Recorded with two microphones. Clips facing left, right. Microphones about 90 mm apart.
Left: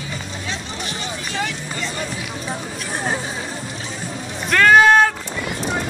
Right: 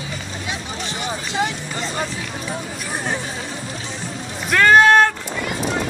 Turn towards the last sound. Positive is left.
turn(degrees=0)  # may be behind; listen again after turning